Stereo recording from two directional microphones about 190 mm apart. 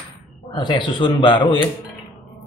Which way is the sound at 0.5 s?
25° left (ahead or behind).